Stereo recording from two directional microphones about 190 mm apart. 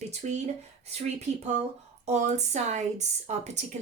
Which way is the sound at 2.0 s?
35° right (ahead or behind).